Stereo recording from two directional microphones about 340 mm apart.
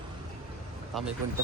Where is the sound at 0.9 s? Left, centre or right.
Centre.